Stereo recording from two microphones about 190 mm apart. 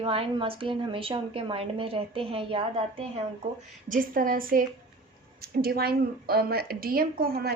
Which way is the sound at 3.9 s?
45° right (ahead or behind).